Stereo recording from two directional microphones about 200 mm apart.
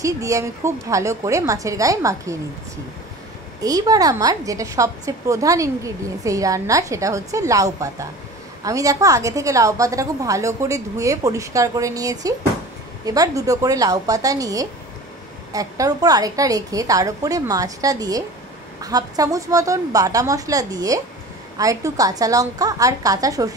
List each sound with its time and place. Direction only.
0.0 s a woman's voice: 15° right (ahead or behind)
3.6 s a woman's voice: 20° right (ahead or behind)